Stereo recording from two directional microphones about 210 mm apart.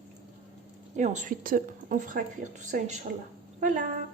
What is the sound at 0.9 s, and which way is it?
A woman's voice, 35° right (ahead or behind).